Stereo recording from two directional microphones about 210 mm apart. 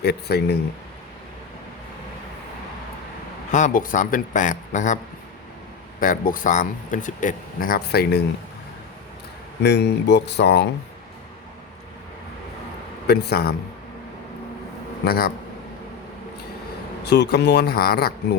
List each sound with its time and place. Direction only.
0.0 s speech: 50° left (ahead or behind)
3.5 s speech: 40° left (ahead or behind)
6.0 s speech: 40° left (ahead or behind)
9.6 s speech: 55° left (ahead or behind)
13.1 s speech: 50° left (ahead or behind)
15.0 s speech: 45° left (ahead or behind)
17.0 s speech: 55° left (ahead or behind)